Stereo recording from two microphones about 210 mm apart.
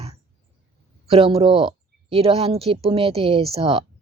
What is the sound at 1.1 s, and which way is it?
Speech, 25° right (ahead or behind).